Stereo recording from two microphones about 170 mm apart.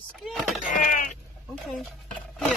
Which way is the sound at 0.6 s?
50° left (ahead or behind).